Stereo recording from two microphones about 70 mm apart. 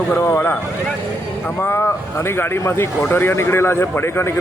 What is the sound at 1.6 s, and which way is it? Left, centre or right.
A man's voice, left.